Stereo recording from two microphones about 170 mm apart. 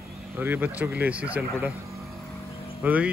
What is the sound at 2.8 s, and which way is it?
Speech, 10° right (ahead or behind).